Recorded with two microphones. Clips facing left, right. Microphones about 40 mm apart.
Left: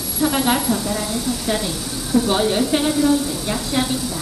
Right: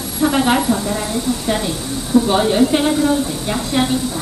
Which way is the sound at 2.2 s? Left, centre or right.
Centre.